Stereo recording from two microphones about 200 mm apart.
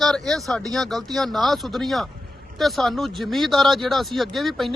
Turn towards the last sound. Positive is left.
turn(degrees=0)  # may be behind; listen again after turning